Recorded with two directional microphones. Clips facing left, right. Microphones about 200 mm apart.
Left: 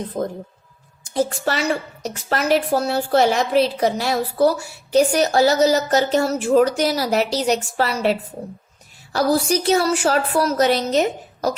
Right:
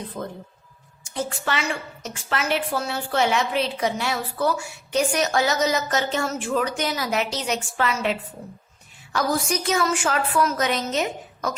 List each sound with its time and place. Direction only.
0.1 s a woman's voice: 40° left (ahead or behind)